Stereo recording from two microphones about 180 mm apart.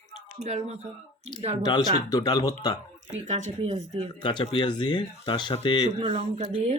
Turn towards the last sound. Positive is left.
turn(degrees=-35)  # may be behind; listen again after turning